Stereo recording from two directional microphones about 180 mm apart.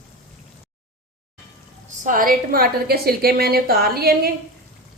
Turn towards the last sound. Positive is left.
turn(degrees=-60)  # may be behind; listen again after turning